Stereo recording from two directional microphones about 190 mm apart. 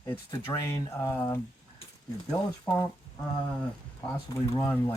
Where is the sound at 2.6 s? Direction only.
10° left (ahead or behind).